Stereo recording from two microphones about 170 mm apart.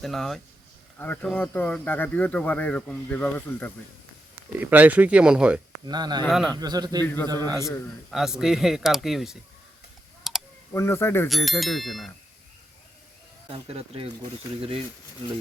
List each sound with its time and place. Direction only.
0.0 s speech: centre (ahead or behind)
4.6 s speech: 10° right (ahead or behind)
5.8 s a man's voice: 25° right (ahead or behind)
6.2 s speech: centre (ahead or behind)
6.5 s a man's voice: 25° right (ahead or behind)
7.0 s speech: 10° left (ahead or behind)
8.1 s speech: centre (ahead or behind)
10.3 s typing: centre (ahead or behind)
10.8 s speech: 15° left (ahead or behind)
11.3 s speech: centre (ahead or behind)
13.5 s speech: 35° right (ahead or behind)